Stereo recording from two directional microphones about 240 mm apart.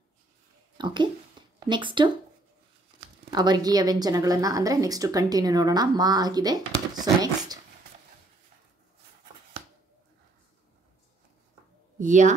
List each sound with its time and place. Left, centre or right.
0.7 s speech: centre
1.4 s a sound: centre
1.7 s speech: centre
3.3 s a woman's voice: centre
12.0 s a woman's voice: right